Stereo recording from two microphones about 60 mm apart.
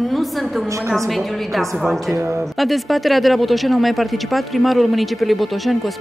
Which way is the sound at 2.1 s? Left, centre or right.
Right.